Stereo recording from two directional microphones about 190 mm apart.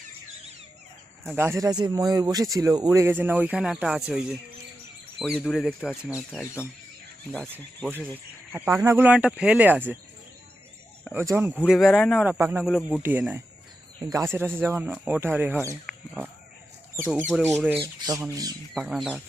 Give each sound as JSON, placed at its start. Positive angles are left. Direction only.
{"t": 1.4, "sound": "speech", "side_deg": -15}
{"t": 8.5, "sound": "speech", "side_deg": -10}
{"t": 11.1, "sound": "speech", "side_deg": -10}
{"t": 15.9, "sound": "a sound", "side_deg": -10}
{"t": 17.0, "sound": "speech", "side_deg": 0}
{"t": 17.7, "sound": "squawk", "side_deg": -20}
{"t": 18.7, "sound": "speech", "side_deg": 0}